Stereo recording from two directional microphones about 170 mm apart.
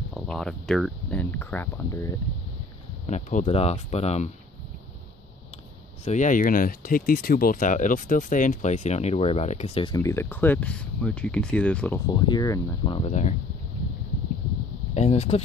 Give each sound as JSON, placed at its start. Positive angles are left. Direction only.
{"t": 0.1, "sound": "speech", "side_deg": 5}
{"t": 3.1, "sound": "speech", "side_deg": 45}
{"t": 6.0, "sound": "speech", "side_deg": 45}
{"t": 9.9, "sound": "speech", "side_deg": 15}
{"t": 12.1, "sound": "speech", "side_deg": 25}
{"t": 13.0, "sound": "speech", "side_deg": 45}
{"t": 15.0, "sound": "speech", "side_deg": 40}